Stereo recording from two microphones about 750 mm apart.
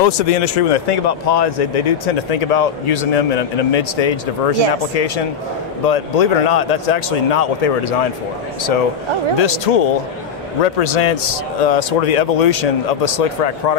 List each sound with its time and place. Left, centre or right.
0.0 s speech: left
9.4 s speech: left